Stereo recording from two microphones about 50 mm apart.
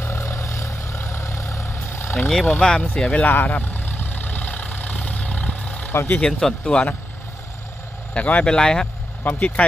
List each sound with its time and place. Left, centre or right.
0.0 s vehicle: left
1.7 s vehicle: left
2.1 s speech: centre
2.6 s speech: left
3.3 s vehicle: left
5.9 s speech: left
6.2 s speech: centre
8.1 s speech: left
9.3 s speech: left